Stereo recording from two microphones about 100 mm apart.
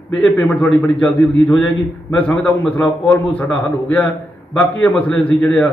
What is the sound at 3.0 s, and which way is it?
A man's voice, 15° left (ahead or behind).